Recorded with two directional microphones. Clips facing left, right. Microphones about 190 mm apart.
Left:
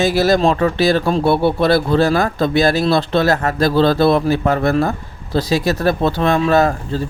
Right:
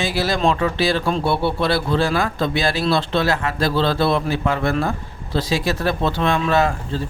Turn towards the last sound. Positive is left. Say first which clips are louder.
# left 4 dB
turn(degrees=40)  # may be behind; listen again after turning